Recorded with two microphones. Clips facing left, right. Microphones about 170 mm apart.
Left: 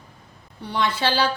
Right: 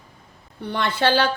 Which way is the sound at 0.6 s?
55° right (ahead or behind).